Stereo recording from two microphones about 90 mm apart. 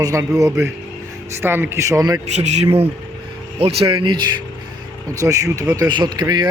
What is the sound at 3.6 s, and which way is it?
Speech, 90° right.